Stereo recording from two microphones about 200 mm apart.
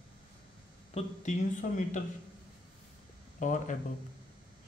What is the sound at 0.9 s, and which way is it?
Speech, 35° left (ahead or behind).